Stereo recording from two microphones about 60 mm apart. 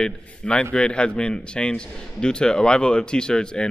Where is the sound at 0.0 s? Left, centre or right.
Centre.